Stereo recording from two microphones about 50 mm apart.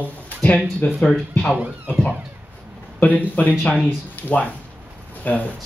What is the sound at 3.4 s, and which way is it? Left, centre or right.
Speech, left.